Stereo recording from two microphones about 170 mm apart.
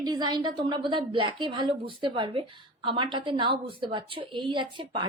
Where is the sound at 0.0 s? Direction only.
25° right (ahead or behind).